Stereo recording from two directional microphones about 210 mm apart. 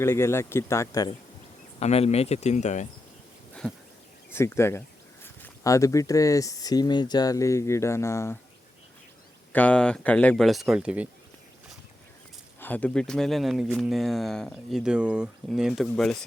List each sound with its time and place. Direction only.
0.0 s speech: 10° left (ahead or behind)
1.8 s speech: 30° left (ahead or behind)
3.6 s speech: 5° left (ahead or behind)
9.5 s speech: 5° left (ahead or behind)
12.5 s speech: 10° left (ahead or behind)